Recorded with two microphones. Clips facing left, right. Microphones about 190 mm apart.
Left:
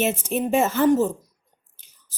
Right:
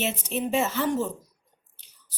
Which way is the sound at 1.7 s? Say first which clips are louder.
Even; 50° left (ahead or behind).